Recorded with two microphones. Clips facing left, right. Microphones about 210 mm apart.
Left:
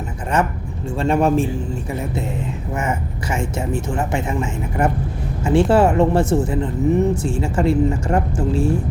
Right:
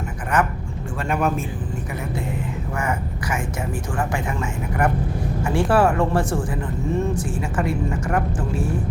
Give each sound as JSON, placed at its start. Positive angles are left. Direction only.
{"t": 1.0, "sound": "speech", "side_deg": 25}
{"t": 3.7, "sound": "speech", "side_deg": 25}